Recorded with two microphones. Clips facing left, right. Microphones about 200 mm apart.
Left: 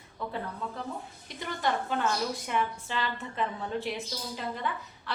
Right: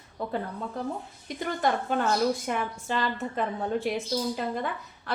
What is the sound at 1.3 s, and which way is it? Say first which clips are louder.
A woman's voice: right 4 dB; 45° right (ahead or behind).